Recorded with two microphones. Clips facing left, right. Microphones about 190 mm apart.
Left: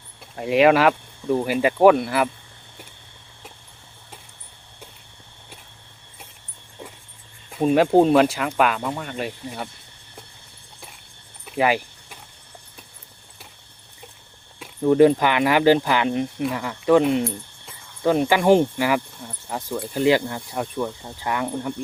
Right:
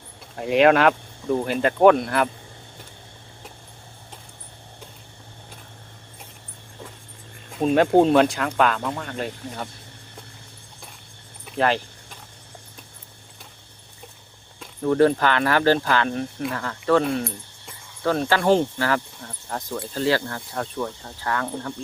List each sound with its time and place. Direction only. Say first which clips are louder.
0.3 s speech: even; centre (ahead or behind)
7.6 s speech: left 1 dB; 5° left (ahead or behind)
11.4 s keys jangling: left 1 dB; 10° left (ahead or behind)
14.6 s speech: left 3 dB; 15° left (ahead or behind)